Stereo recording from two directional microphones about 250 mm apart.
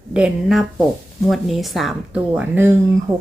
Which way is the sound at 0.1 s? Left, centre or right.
Centre.